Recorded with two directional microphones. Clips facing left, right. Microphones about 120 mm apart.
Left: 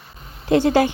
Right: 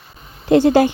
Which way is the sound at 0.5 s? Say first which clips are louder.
Right 4 dB; 40° right (ahead or behind).